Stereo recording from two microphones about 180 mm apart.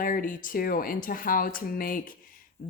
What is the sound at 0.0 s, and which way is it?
Speech, 50° left (ahead or behind).